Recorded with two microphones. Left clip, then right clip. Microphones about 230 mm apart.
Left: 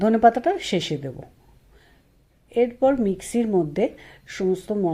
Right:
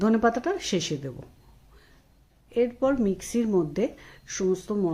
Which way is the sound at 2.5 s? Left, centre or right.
Centre.